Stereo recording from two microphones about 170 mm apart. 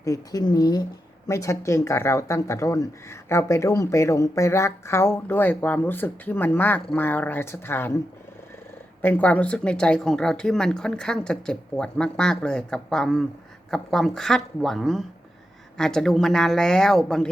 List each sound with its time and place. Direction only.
0.0 s speech: 20° left (ahead or behind)
9.0 s speech: 10° left (ahead or behind)